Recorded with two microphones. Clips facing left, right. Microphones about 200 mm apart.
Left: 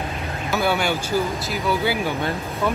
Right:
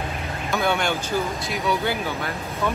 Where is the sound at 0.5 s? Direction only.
5° left (ahead or behind).